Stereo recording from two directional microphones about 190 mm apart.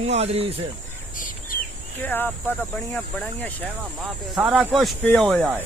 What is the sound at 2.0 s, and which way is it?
Speech, 10° left (ahead or behind).